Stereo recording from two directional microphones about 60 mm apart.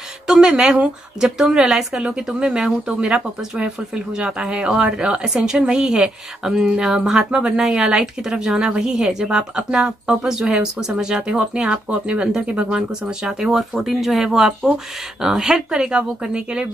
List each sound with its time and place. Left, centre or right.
0.3 s speech: centre